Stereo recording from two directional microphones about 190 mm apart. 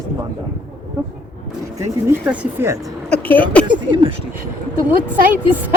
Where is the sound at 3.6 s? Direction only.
25° right (ahead or behind).